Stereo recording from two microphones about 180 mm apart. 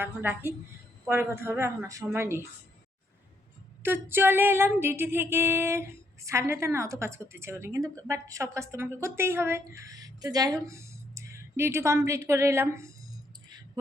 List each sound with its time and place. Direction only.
0.0 s a woman's voice: 10° right (ahead or behind)
3.8 s a woman's voice: 10° right (ahead or behind)